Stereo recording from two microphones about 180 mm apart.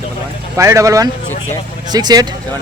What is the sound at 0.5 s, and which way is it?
A man's voice, 15° right (ahead or behind).